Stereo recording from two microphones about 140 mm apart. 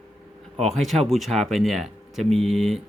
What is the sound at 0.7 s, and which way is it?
Speech, centre (ahead or behind).